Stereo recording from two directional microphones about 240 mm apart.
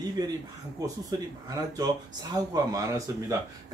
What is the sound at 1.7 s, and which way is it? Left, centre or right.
Speech, centre.